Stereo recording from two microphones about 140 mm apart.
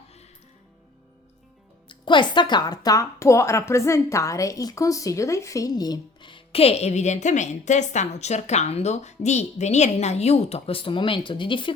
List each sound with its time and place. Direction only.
1.9 s speech: 35° left (ahead or behind)